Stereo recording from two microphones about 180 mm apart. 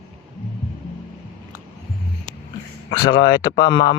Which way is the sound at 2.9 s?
25° left (ahead or behind).